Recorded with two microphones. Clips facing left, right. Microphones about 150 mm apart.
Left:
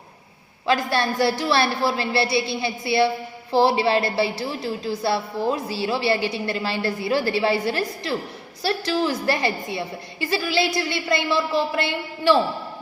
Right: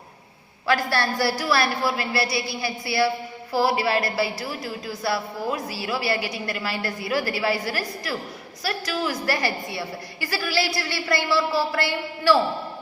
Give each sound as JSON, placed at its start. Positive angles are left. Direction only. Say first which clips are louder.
{"t": 0.7, "sound": "a woman's voice", "louder": "left 1 dB", "side_deg": 20}